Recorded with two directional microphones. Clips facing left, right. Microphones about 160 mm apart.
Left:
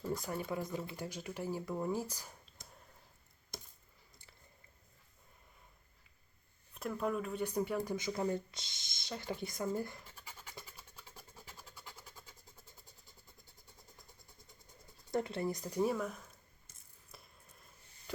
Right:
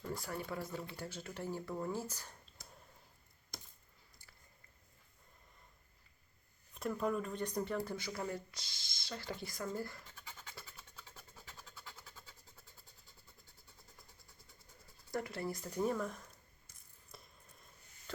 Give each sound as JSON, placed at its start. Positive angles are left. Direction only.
{"t": 0.1, "sound": "speech", "side_deg": 20}
{"t": 6.7, "sound": "speech", "side_deg": 0}
{"t": 9.7, "sound": "scratch", "side_deg": 20}
{"t": 15.1, "sound": "speech", "side_deg": 25}
{"t": 17.1, "sound": "a sound", "side_deg": 0}